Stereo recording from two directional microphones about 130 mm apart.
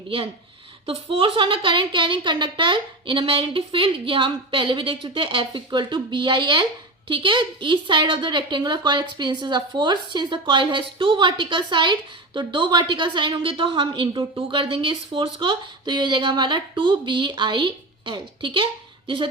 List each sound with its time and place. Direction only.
0.9 s a woman's voice: 45° right (ahead or behind)